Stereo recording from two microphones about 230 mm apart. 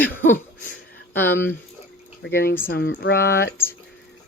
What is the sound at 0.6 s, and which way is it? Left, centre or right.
Speech, left.